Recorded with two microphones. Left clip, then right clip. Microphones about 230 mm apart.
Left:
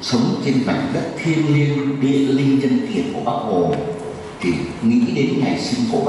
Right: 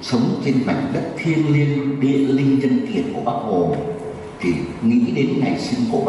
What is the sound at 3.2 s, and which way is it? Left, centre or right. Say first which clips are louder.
Speech: left 1 dB; right.